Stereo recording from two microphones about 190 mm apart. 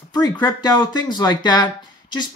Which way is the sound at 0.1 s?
20° left (ahead or behind).